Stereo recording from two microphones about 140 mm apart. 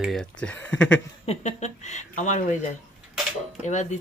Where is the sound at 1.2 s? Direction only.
55° left (ahead or behind).